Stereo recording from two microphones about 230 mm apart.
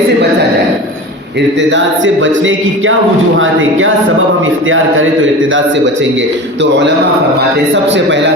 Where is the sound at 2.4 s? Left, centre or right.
Right.